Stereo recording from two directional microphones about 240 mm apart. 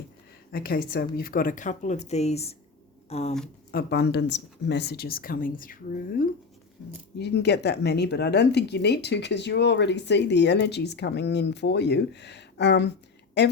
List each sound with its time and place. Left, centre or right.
0.5 s speech: left
3.7 s speech: left